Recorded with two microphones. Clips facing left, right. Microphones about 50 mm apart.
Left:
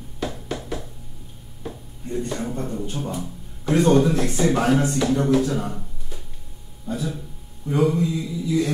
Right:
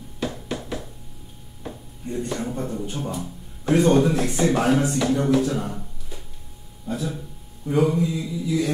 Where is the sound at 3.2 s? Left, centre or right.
Centre.